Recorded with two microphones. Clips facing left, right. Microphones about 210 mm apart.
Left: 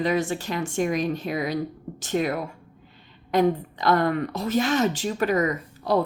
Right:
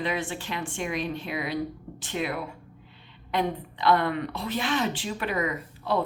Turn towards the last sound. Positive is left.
turn(degrees=40)  # may be behind; listen again after turning